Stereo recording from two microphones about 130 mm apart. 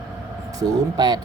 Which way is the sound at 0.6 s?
30° right (ahead or behind).